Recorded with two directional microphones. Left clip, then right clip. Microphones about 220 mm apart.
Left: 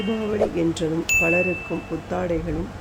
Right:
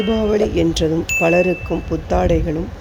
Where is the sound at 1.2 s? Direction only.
35° right (ahead or behind).